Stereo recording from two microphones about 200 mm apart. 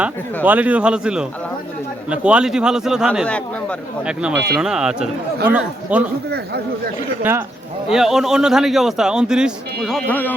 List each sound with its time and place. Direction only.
0.4 s a man's voice: 10° right (ahead or behind)
4.0 s a man's voice: 5° right (ahead or behind)
6.3 s speech: 50° right (ahead or behind)
7.2 s a man's voice: 10° right (ahead or behind); by 10.3 s 10° left (ahead or behind)